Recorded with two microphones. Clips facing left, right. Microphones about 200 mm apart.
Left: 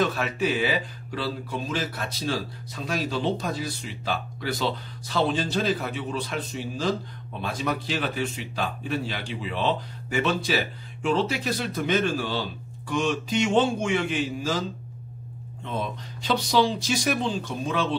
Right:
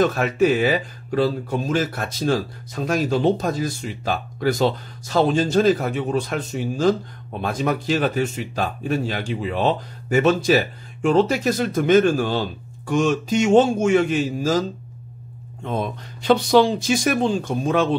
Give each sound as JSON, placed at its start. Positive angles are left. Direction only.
{"t": 0.0, "sound": "speech", "side_deg": -50}
{"t": 15.6, "sound": "speech", "side_deg": -50}